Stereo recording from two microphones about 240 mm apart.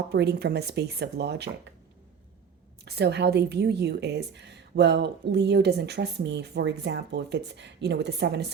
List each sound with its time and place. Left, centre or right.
0.1 s a woman's voice: right
2.8 s a woman's voice: right